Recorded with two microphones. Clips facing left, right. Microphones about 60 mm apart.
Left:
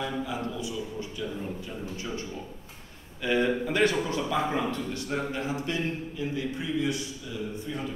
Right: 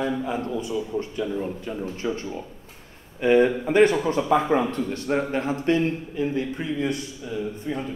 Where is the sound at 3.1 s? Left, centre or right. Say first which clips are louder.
Right 7 dB; right.